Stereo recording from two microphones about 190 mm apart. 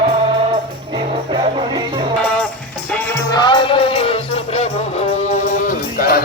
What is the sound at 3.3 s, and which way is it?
Music, 25° left (ahead or behind).